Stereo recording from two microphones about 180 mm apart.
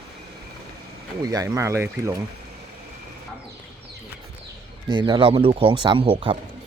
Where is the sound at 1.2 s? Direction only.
20° right (ahead or behind).